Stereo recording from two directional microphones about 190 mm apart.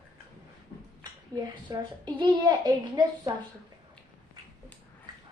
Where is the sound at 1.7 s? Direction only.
20° right (ahead or behind).